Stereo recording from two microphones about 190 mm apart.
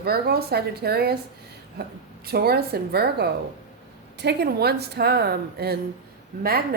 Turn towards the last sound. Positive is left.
turn(degrees=-55)  # may be behind; listen again after turning